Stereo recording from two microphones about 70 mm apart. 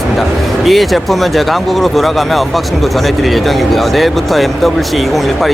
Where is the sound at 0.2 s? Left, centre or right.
Centre.